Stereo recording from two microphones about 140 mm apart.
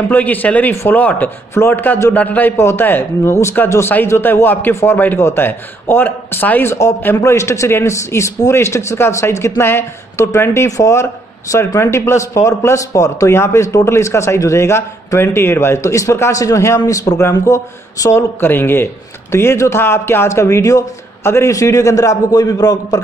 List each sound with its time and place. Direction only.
0.1 s speech: 10° left (ahead or behind); by 22.9 s 30° left (ahead or behind)